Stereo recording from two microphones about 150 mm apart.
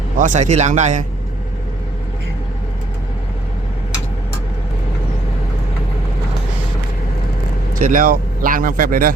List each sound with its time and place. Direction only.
0.2 s speech: 55° right (ahead or behind)
7.8 s speech: 65° right (ahead or behind)